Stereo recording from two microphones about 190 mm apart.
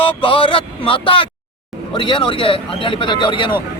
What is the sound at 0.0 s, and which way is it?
Speech, 30° left (ahead or behind).